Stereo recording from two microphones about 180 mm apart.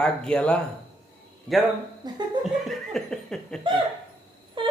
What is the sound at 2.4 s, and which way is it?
Laughter, centre (ahead or behind).